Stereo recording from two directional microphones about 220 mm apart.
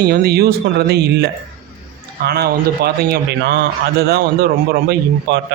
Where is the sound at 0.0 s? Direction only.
45° right (ahead or behind).